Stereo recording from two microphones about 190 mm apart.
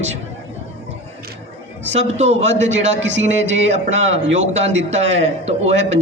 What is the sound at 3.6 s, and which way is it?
A woman's voice, 35° right (ahead or behind).